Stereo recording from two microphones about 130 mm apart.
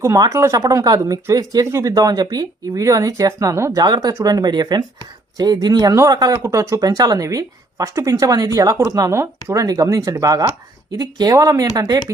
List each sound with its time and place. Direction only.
0.0 s speech: 25° right (ahead or behind)